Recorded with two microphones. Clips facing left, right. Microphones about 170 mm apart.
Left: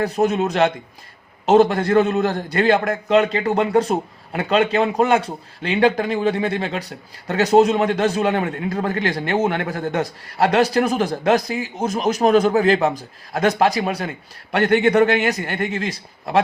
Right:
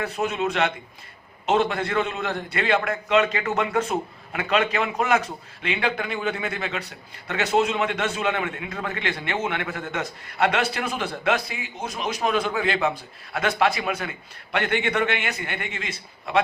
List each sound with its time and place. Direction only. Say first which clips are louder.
0.0 s a man's voice: left 7 dB; 40° left (ahead or behind)